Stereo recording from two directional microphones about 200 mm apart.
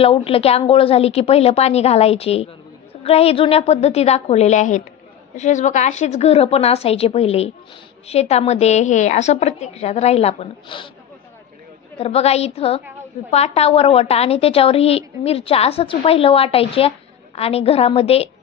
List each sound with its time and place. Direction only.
0.0 s a woman's voice: 30° left (ahead or behind)
11.9 s a woman's voice: 30° left (ahead or behind)